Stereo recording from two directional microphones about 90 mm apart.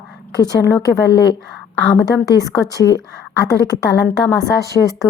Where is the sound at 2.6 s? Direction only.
40° left (ahead or behind).